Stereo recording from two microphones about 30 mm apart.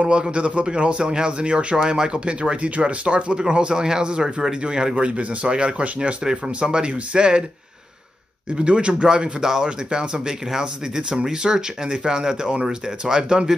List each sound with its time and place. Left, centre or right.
0.0 s speech: right
1.8 s speech: right
4.9 s speech: right
8.5 s speech: right
9.4 s speech: centre
9.7 s speech: right